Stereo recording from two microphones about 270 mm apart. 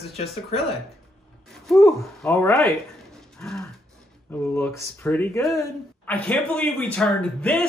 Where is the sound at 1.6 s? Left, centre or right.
Centre.